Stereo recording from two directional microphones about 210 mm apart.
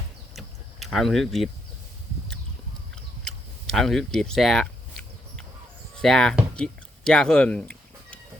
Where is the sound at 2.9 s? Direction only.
Centre (ahead or behind).